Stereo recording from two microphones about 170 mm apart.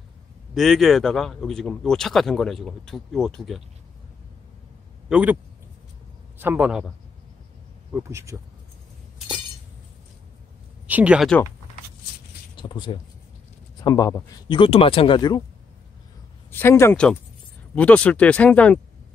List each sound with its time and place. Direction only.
0.6 s speech: centre (ahead or behind)
5.1 s a man's voice: 10° right (ahead or behind)
6.4 s a man's voice: 10° right (ahead or behind)
7.9 s a man's voice: 15° right (ahead or behind)
10.9 s a man's voice: 10° right (ahead or behind)
12.5 s speech: 30° left (ahead or behind)
16.5 s speech: 15° left (ahead or behind)